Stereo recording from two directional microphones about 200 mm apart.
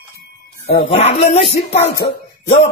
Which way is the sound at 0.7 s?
30° left (ahead or behind).